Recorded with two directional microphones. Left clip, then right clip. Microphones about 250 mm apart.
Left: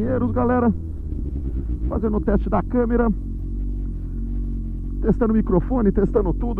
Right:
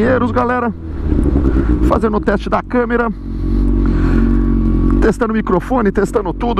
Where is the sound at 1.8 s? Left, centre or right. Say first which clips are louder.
Right 8 dB; centre.